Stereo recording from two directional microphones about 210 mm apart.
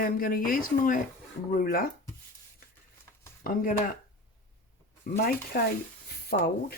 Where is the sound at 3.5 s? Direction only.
45° left (ahead or behind).